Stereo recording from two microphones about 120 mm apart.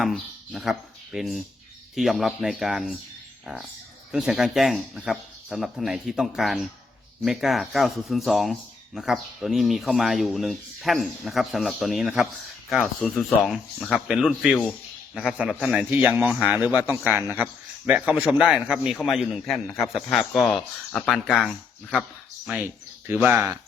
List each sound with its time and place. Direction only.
0.0 s speech: 5° right (ahead or behind)
3.4 s a sound: 5° right (ahead or behind)
4.1 s a man's voice: 5° right (ahead or behind)
22.4 s speech: 15° right (ahead or behind)